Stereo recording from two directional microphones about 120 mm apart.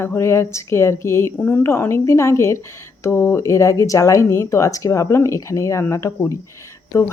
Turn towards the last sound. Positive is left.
turn(degrees=20)  # may be behind; listen again after turning